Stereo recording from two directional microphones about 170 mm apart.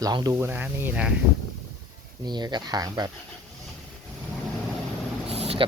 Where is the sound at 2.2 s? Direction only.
25° right (ahead or behind).